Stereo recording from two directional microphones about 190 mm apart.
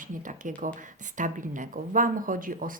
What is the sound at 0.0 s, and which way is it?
Speech, 45° right (ahead or behind).